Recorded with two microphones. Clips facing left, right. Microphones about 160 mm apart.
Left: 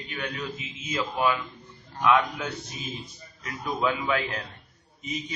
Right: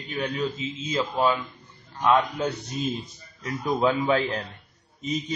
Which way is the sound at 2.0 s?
30° right (ahead or behind).